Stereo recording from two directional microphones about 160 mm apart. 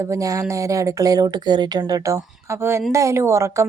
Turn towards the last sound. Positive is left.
turn(degrees=-20)  # may be behind; listen again after turning